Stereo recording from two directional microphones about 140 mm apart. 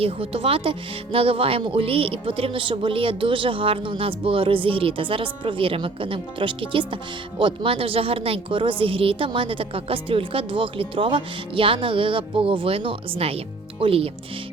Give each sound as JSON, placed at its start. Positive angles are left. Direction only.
{"t": 0.0, "sound": "speech", "side_deg": -40}